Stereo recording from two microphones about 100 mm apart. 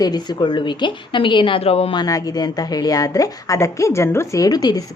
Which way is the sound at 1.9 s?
35° left (ahead or behind).